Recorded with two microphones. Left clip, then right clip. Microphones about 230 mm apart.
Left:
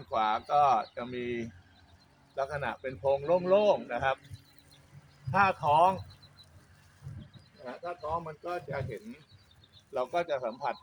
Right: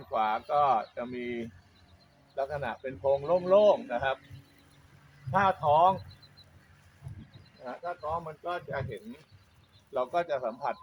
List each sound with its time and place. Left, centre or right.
0.1 s speech: left
5.3 s speech: left
7.6 s speech: left